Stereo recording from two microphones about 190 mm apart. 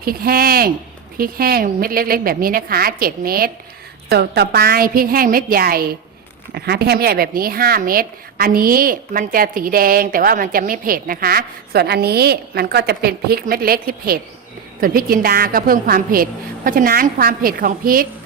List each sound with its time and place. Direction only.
0.0 s a woman's voice: 50° right (ahead or behind)